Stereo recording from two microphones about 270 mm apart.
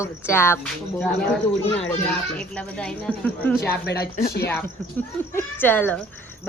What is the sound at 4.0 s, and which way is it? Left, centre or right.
Speech, left.